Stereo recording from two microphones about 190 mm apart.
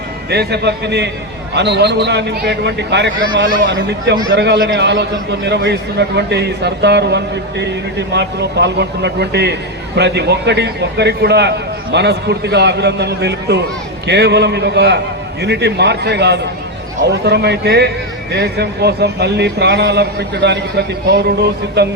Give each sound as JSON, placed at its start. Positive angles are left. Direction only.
{"t": 0.3, "sound": "a man's voice", "side_deg": -60}